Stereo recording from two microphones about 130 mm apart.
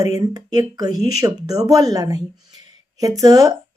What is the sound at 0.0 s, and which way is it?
Speech, 30° right (ahead or behind).